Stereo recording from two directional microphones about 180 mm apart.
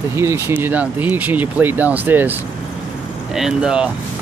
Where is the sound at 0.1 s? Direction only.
15° right (ahead or behind).